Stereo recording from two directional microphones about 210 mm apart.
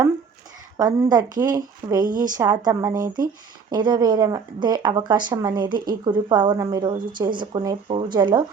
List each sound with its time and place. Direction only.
0.8 s a woman's voice: 15° right (ahead or behind)
5.7 s speech: 45° right (ahead or behind)
6.1 s speech: 20° right (ahead or behind)